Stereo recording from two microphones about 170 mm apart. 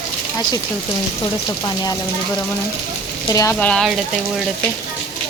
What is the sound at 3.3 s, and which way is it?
Speech, 20° left (ahead or behind).